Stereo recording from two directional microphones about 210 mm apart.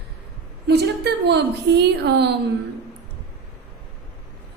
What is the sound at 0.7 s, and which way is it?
A woman's voice, 50° right (ahead or behind).